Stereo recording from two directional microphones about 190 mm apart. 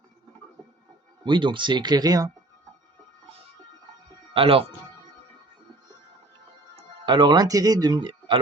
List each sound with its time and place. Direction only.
1.2 s speech: 25° right (ahead or behind)
4.4 s speech: 30° right (ahead or behind)
6.7 s speech: 25° right (ahead or behind)